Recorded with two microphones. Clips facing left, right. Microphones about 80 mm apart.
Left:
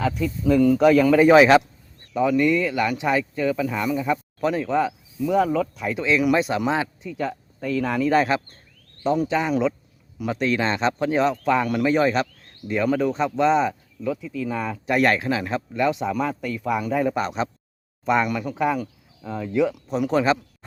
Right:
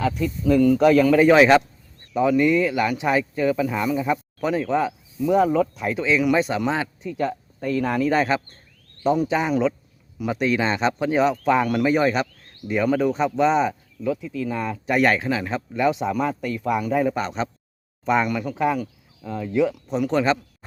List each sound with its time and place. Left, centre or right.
0.4 s speech: centre
0.8 s a man's voice: centre
2.1 s a man's voice: centre
5.9 s a man's voice: centre
7.2 s a man's voice: centre
18.8 s cricket: centre
19.5 s a man's voice: centre